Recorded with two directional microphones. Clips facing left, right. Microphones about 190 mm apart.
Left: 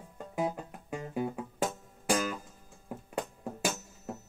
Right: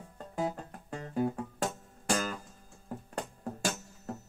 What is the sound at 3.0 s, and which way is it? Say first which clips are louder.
Music: left 3 dB; 10° left (ahead or behind).